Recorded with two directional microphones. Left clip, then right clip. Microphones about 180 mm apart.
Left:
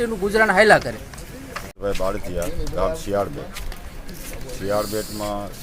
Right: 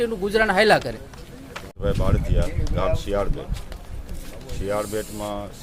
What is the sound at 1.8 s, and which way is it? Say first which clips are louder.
Speech: left 2 dB; 10° right (ahead or behind).